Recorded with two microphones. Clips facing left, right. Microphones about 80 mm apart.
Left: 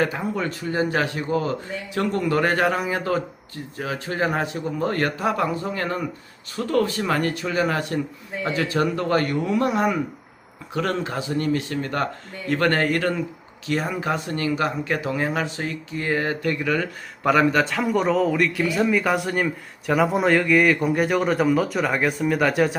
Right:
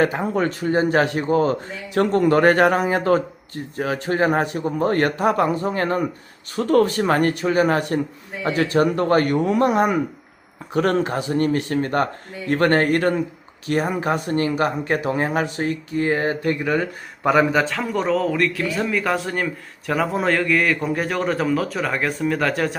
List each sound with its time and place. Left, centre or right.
0.0 s speech: right
0.3 s speech: right
1.0 s speech: right
17.2 s a man's voice: centre